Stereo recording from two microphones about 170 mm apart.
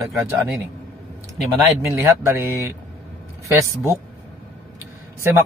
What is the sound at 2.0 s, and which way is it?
Speech, 15° right (ahead or behind).